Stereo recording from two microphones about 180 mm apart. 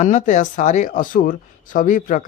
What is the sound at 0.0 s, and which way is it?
Speech, 45° left (ahead or behind).